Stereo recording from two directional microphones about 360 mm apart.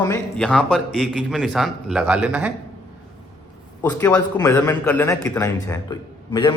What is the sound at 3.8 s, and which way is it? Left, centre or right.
A man's voice, centre.